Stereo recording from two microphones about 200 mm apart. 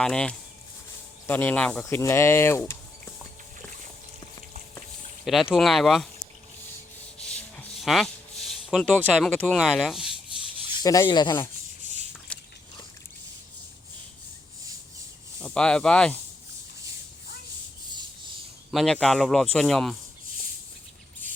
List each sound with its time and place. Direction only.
0.0 s speech: 5° left (ahead or behind)
5.2 s speech: centre (ahead or behind)
7.3 s a sound: 5° left (ahead or behind)
9.1 s speech: 5° left (ahead or behind)
10.8 s speech: 15° left (ahead or behind)
12.3 s biting: 5° left (ahead or behind)
15.4 s speech: 5° left (ahead or behind)
18.7 s speech: centre (ahead or behind)